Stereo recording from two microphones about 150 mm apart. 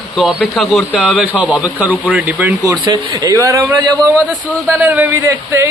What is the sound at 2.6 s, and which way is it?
Speech, 25° right (ahead or behind).